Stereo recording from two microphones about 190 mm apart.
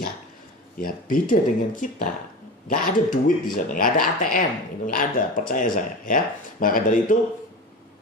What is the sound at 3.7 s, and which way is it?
Speech, 45° left (ahead or behind).